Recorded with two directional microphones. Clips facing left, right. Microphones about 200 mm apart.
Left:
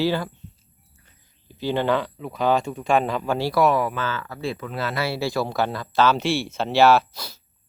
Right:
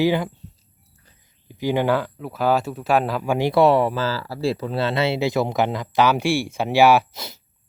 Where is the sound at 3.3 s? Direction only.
20° right (ahead or behind).